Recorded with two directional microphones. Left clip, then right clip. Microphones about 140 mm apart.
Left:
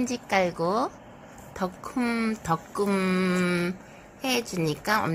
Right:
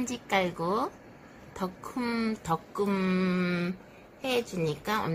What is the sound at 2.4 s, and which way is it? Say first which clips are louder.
A woman's voice: left 3 dB; 35° left (ahead or behind).